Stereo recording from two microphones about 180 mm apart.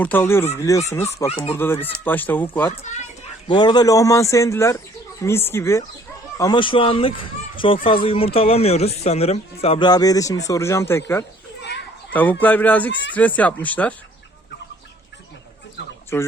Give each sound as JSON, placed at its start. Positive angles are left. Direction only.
{"t": 0.0, "sound": "speech", "side_deg": 10}
{"t": 1.3, "sound": "speech", "side_deg": 35}
{"t": 1.5, "sound": "speech", "side_deg": 10}
{"t": 3.5, "sound": "speech", "side_deg": 25}
{"t": 16.1, "sound": "speech", "side_deg": 15}